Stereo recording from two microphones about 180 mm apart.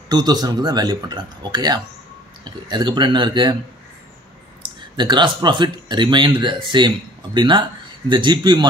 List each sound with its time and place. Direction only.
0.1 s speech: 25° right (ahead or behind)
4.9 s speech: 25° right (ahead or behind)